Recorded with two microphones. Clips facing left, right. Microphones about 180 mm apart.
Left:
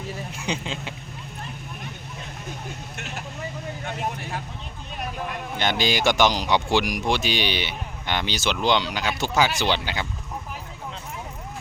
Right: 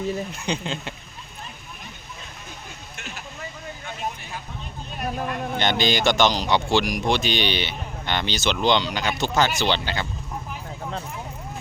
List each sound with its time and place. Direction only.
0.3 s speech: 5° left (ahead or behind)
3.8 s speech: 65° left (ahead or behind)
5.5 s speech: 5° left (ahead or behind)